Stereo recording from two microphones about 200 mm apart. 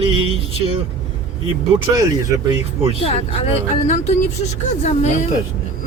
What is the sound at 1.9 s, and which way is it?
Speech, 15° right (ahead or behind).